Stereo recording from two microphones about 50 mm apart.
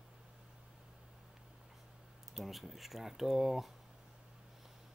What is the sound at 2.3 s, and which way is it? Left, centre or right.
Speech, centre.